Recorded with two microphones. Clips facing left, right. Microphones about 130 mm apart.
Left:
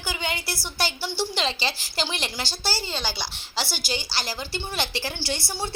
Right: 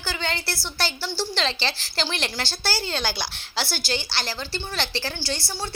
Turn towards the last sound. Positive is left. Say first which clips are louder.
# left 1 dB
turn(degrees=20)  # may be behind; listen again after turning